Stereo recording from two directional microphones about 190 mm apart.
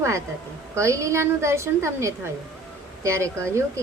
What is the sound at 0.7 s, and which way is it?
A woman's voice, 15° right (ahead or behind).